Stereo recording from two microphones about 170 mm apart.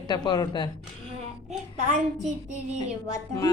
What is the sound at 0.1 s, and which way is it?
Speech, 25° left (ahead or behind).